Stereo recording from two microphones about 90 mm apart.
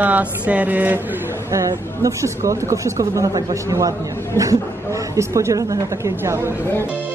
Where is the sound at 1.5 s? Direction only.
40° right (ahead or behind).